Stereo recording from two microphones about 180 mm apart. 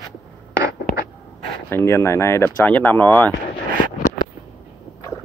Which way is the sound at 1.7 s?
15° left (ahead or behind).